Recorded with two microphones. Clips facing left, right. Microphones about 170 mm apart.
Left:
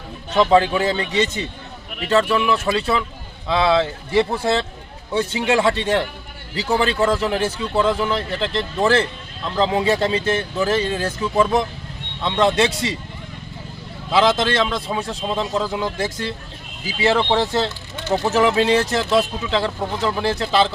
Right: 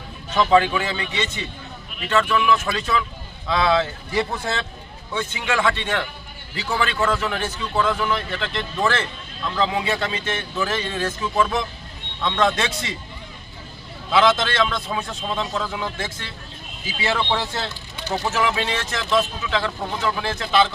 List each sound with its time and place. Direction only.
0.3 s a man's voice: 30° left (ahead or behind)
14.1 s a man's voice: 30° left (ahead or behind)